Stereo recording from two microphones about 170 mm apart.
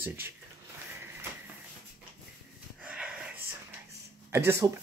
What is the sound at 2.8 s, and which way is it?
Wheeze, 5° right (ahead or behind).